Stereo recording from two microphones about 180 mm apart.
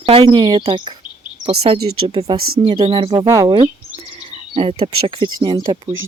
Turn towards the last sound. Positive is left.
turn(degrees=-20)  # may be behind; listen again after turning